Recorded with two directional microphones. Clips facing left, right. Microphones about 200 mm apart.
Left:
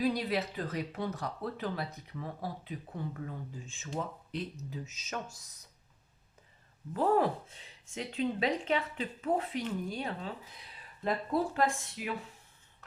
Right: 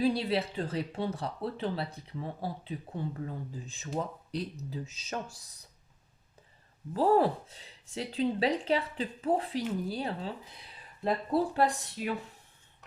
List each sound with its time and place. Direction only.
0.0 s speech: 30° right (ahead or behind)
6.9 s speech: 35° right (ahead or behind)